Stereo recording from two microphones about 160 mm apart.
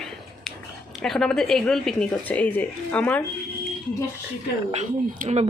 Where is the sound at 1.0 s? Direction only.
5° left (ahead or behind).